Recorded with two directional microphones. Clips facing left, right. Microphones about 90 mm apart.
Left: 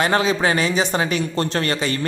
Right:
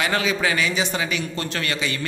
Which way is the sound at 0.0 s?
35° left (ahead or behind).